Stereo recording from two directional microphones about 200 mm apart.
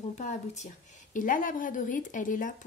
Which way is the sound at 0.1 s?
35° left (ahead or behind).